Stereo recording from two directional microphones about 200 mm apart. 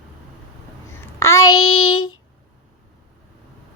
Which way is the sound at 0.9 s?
15° left (ahead or behind).